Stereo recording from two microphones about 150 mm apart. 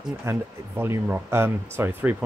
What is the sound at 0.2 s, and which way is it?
Speech, 15° right (ahead or behind).